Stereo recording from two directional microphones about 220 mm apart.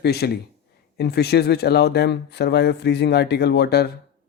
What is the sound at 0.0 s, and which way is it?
Speech, 45° left (ahead or behind).